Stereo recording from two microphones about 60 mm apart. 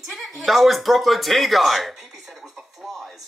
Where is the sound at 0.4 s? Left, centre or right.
Centre.